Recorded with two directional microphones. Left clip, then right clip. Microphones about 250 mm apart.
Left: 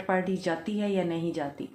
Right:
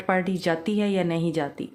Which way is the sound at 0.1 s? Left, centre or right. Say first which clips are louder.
Right 4 dB; right.